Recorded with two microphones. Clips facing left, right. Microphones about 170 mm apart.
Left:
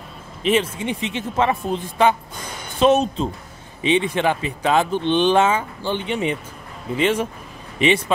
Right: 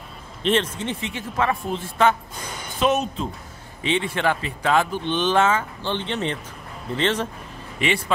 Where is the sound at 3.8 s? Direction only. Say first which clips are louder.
Left 4 dB; 15° left (ahead or behind).